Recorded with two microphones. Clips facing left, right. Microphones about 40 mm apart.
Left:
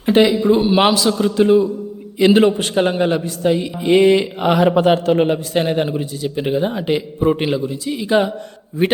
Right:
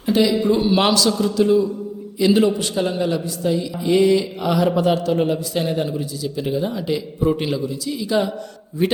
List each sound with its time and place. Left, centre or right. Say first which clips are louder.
0.0 s a sound: left 4 dB; left
0.3 s a man's voice: left 3 dB; left
1.2 s a man's voice: left 6 dB; left